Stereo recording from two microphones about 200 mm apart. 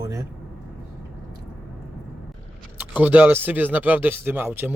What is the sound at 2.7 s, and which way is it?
Speech, 10° right (ahead or behind).